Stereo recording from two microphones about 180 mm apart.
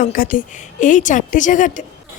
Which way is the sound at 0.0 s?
50° left (ahead or behind).